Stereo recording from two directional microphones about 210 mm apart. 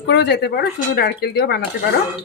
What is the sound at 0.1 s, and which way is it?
Speech, 55° left (ahead or behind).